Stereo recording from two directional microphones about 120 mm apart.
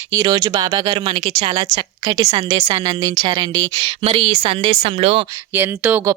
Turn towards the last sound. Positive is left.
turn(degrees=-15)  # may be behind; listen again after turning